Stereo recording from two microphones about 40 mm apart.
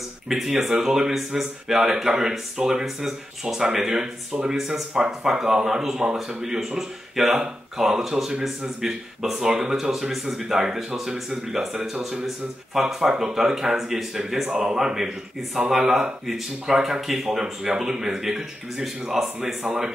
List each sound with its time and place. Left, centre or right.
0.3 s speech: centre